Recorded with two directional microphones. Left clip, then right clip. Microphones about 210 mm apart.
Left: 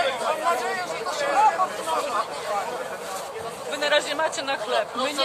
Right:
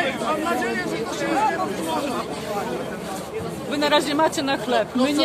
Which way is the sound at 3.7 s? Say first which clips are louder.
Right 3 dB; 50° right (ahead or behind).